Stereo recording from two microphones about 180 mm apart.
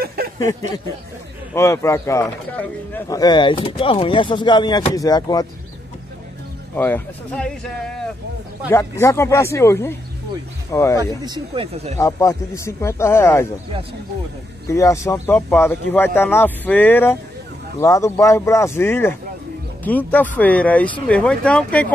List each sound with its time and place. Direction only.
0.0 s a sound: 60° right (ahead or behind)
0.4 s speech: 20° left (ahead or behind)
3.2 s speech: 25° left (ahead or behind)
6.7 s speech: 10° left (ahead or behind)
11.0 s speech: 25° right (ahead or behind)
12.0 s speech: 20° left (ahead or behind)
14.7 s speech: 15° left (ahead or behind)